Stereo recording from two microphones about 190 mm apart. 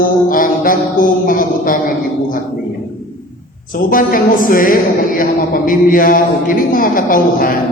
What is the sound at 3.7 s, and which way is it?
A woman's voice, 50° left (ahead or behind).